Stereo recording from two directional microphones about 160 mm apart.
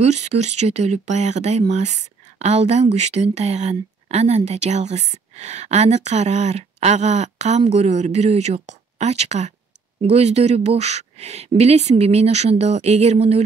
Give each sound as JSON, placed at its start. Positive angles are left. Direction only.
{"t": 0.0, "sound": "speech", "side_deg": -45}